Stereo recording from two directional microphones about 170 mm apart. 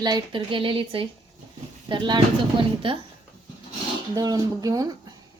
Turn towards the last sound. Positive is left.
turn(degrees=-20)  # may be behind; listen again after turning